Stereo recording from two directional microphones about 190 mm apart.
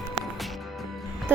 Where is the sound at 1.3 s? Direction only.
10° right (ahead or behind).